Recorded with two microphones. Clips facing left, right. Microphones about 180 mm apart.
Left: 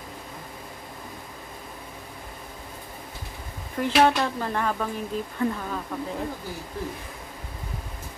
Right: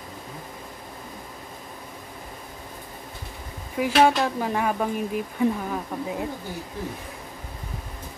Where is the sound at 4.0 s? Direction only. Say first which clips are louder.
Right 1 dB; 15° right (ahead or behind).